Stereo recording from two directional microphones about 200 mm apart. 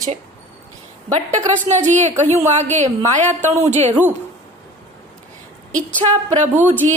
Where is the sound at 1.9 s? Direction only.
35° right (ahead or behind).